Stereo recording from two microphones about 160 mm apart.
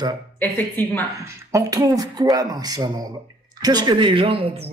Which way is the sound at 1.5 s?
20° right (ahead or behind).